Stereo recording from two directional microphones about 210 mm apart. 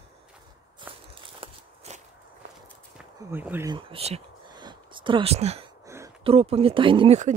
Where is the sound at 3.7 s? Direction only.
25° right (ahead or behind).